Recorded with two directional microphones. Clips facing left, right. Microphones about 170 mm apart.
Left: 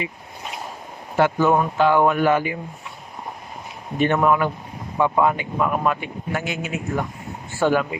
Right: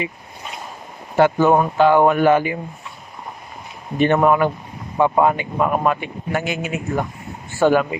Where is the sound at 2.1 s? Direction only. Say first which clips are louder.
Right 4 dB; 45° right (ahead or behind).